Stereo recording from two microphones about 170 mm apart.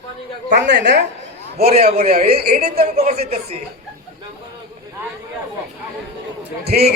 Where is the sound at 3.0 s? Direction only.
40° right (ahead or behind).